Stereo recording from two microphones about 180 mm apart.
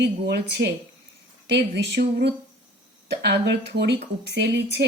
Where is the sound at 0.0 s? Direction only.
65° right (ahead or behind).